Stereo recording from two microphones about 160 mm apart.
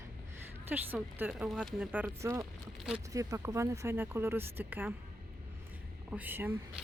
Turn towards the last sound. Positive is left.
turn(degrees=-10)  # may be behind; listen again after turning